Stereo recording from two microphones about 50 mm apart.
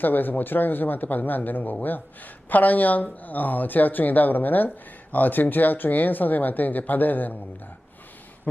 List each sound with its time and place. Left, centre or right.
0.0 s speech: left